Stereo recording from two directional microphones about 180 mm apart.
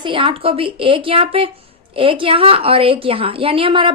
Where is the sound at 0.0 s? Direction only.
30° right (ahead or behind).